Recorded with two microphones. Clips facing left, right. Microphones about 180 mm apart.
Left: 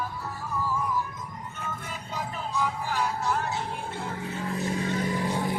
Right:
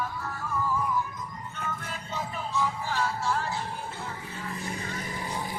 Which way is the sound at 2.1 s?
15° left (ahead or behind).